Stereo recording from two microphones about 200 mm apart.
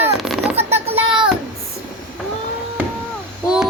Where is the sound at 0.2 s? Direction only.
Centre (ahead or behind).